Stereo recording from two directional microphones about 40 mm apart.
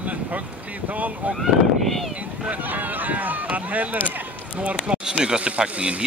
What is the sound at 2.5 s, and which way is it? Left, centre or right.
Speech, right.